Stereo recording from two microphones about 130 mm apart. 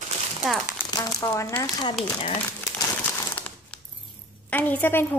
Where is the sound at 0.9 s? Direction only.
25° left (ahead or behind).